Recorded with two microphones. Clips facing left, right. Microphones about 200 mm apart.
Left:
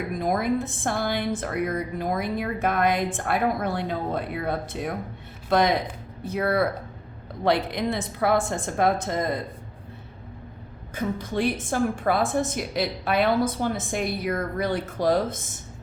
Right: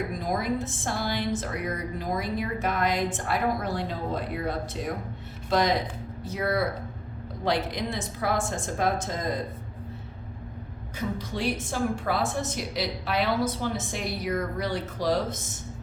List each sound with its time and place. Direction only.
0.2 s a woman's voice: 55° left (ahead or behind)
10.9 s a woman's voice: 50° left (ahead or behind)